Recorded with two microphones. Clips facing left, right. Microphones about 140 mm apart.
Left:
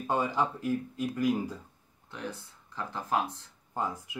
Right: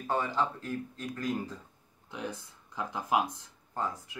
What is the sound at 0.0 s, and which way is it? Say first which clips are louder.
Speech: left 2 dB; 15° left (ahead or behind).